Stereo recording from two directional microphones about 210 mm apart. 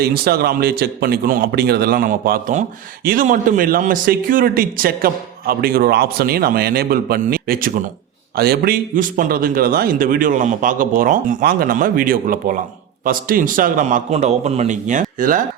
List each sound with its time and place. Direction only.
0.0 s a man's voice: 45° right (ahead or behind)